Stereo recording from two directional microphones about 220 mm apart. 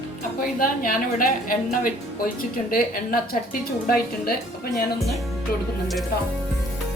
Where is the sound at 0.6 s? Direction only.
40° left (ahead or behind).